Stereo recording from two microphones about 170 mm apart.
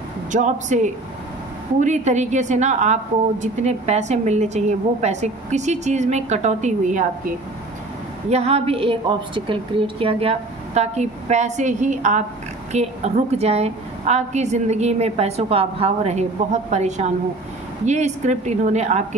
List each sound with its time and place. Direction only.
0.3 s a woman's voice: 45° right (ahead or behind)
8.3 s a woman's voice: 40° right (ahead or behind)